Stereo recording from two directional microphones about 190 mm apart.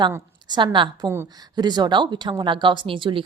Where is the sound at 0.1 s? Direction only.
25° right (ahead or behind).